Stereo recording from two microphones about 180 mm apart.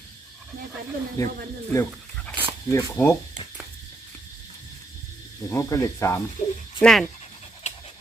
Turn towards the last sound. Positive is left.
turn(degrees=40)  # may be behind; listen again after turning